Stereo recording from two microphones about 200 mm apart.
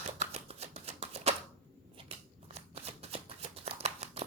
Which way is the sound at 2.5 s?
30° right (ahead or behind).